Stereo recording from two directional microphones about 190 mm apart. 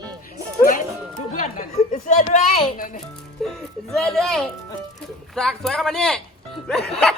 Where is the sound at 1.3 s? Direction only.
45° left (ahead or behind).